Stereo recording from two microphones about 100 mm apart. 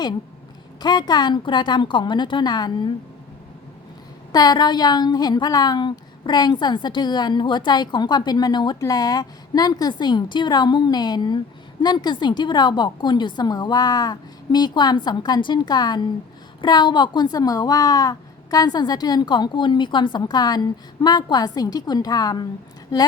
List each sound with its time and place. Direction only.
0.8 s a woman's voice: 45° left (ahead or behind)
4.3 s a woman's voice: 45° left (ahead or behind)